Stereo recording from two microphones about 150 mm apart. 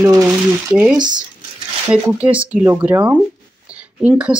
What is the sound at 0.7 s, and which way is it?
Speech, 10° right (ahead or behind).